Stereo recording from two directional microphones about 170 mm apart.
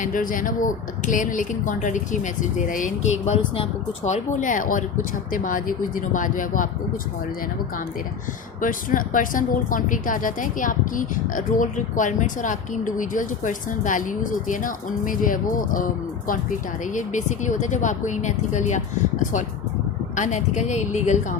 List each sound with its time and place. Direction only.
0.0 s speech: 55° left (ahead or behind)
8.6 s speech: 55° left (ahead or behind)
20.1 s speech: 45° left (ahead or behind)